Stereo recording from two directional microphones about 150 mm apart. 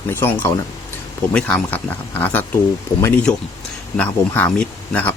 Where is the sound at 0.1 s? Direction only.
15° left (ahead or behind).